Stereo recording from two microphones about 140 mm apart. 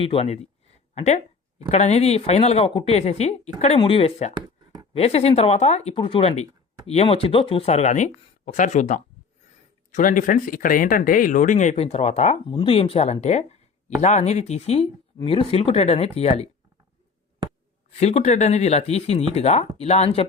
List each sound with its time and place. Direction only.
0.0 s speech: 40° left (ahead or behind)
0.9 s a sound: 50° left (ahead or behind)
1.7 s speech: 50° left (ahead or behind)
3.8 s speech: 40° left (ahead or behind)
4.4 s a sound: 30° right (ahead or behind)
4.9 s speech: 50° left (ahead or behind)
9.9 s speech: 70° left (ahead or behind); by 12.4 s 50° left (ahead or behind)
12.5 s speech: 40° left (ahead or behind)
18.0 s speech: 50° left (ahead or behind)